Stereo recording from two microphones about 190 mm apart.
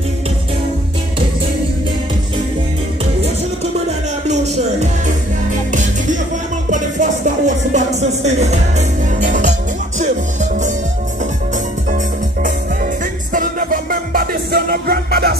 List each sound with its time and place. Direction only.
4.3 s music: 35° right (ahead or behind)
12.4 s music: 45° right (ahead or behind)